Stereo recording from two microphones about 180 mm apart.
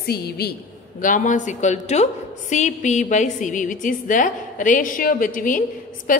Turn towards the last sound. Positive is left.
turn(degrees=50)  # may be behind; listen again after turning